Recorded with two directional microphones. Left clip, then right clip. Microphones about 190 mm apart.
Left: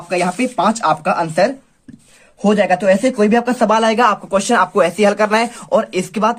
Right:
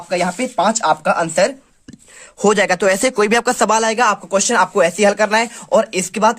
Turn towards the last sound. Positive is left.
turn(degrees=-15)  # may be behind; listen again after turning